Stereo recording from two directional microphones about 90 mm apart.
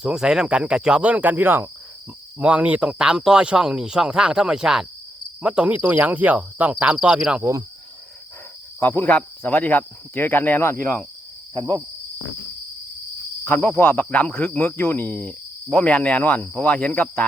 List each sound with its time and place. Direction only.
0.0 s speech: 5° right (ahead or behind)
8.8 s speech: 25° left (ahead or behind)
13.4 s speech: 20° left (ahead or behind)